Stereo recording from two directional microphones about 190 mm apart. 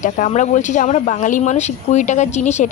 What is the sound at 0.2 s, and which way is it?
Speech, 40° left (ahead or behind).